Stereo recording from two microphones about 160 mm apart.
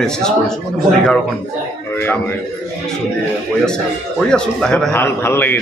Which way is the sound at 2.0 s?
15° left (ahead or behind).